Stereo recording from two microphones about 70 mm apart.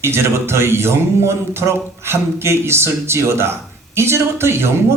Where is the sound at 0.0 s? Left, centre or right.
Right.